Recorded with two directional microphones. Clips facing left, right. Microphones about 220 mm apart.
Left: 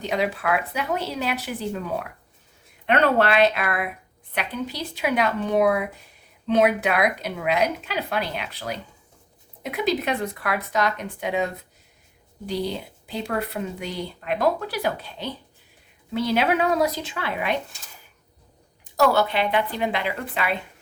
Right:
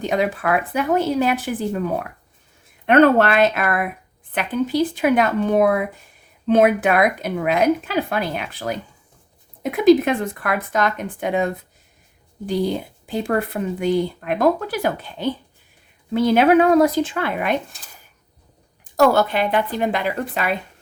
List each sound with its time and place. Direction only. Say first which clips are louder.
0.0 s speech: right 4 dB; 50° right (ahead or behind)
18.9 s speech: right 4 dB; 45° right (ahead or behind)